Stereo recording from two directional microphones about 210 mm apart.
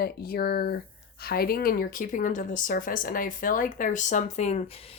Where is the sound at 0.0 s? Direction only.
45° left (ahead or behind).